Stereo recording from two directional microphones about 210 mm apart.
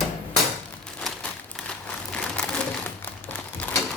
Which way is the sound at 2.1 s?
5° left (ahead or behind).